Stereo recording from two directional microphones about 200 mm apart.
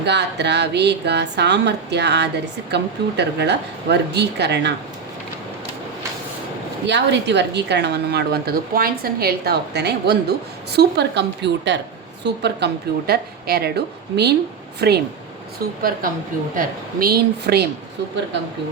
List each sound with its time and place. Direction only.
0.0 s a woman's voice: 60° right (ahead or behind)
6.8 s a woman's voice: 60° right (ahead or behind)